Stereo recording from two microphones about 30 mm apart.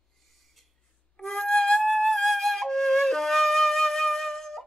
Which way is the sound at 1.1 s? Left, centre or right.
Centre.